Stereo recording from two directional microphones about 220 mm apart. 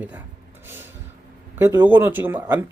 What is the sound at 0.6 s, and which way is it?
Snort, 10° right (ahead or behind).